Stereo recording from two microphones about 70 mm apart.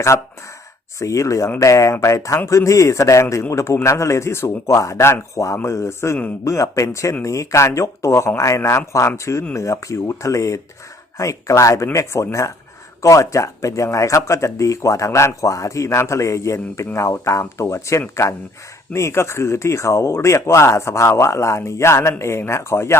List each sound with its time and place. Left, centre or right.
0.1 s speech: left